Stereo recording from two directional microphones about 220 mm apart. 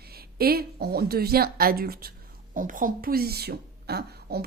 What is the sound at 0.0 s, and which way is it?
A woman's voice, 45° right (ahead or behind).